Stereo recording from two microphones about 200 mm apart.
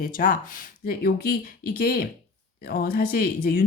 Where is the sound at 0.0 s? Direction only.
45° left (ahead or behind).